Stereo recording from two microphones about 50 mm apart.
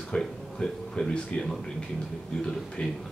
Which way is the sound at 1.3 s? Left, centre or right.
Left.